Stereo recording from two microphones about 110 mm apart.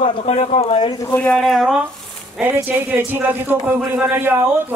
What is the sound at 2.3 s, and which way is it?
A man's voice, 15° right (ahead or behind).